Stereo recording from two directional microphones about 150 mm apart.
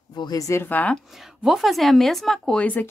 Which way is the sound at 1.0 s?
Centre (ahead or behind).